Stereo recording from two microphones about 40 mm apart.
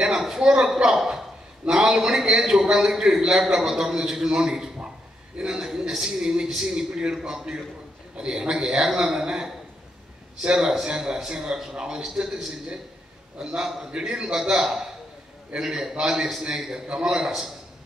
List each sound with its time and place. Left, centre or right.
0.0 s a man's voice: centre
13.4 s a man's voice: right